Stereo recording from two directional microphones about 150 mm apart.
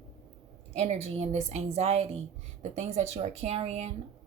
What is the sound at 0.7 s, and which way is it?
Speech, 45° right (ahead or behind).